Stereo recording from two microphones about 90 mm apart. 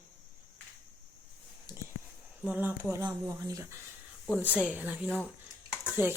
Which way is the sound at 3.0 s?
40° right (ahead or behind).